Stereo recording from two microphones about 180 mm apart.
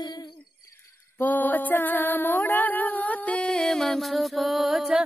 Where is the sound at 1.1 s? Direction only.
10° left (ahead or behind).